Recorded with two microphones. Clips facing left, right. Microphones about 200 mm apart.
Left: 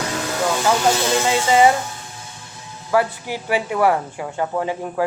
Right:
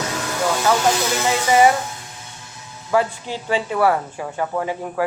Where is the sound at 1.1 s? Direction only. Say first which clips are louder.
Left 1 dB; 20° left (ahead or behind).